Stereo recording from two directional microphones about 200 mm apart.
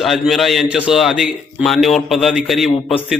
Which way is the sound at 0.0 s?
Centre (ahead or behind).